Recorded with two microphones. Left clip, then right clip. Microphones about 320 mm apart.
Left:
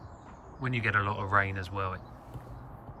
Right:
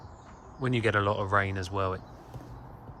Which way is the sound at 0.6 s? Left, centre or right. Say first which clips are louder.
Right 2 dB; centre.